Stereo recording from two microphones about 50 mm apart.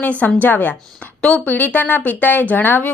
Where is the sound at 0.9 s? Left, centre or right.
Left.